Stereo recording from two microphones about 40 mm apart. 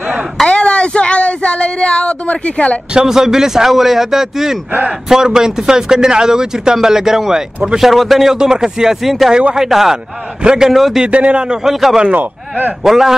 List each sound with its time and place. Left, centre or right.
0.5 s a sound: left
3.1 s a man's voice: centre
8.4 s speech: centre
10.4 s a man's voice: centre
10.7 s a man's voice: centre
11.1 s a man's voice: right
11.4 s a man's voice: centre
11.7 s a man's voice: centre
12.1 s speech: right
12.8 s speech: centre